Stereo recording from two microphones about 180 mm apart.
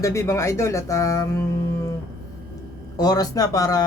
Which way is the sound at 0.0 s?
15° left (ahead or behind).